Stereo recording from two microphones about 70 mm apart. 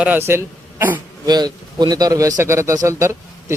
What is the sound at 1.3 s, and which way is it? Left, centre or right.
A man's voice, right.